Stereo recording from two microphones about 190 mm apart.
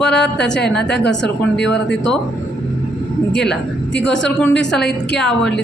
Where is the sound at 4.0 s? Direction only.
70° left (ahead or behind).